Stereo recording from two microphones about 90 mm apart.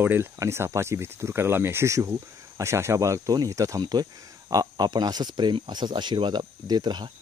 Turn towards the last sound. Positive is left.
turn(degrees=-55)  # may be behind; listen again after turning